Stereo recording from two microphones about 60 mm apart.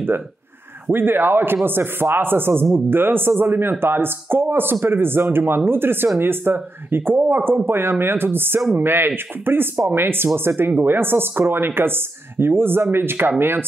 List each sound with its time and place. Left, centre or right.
0.9 s speech: right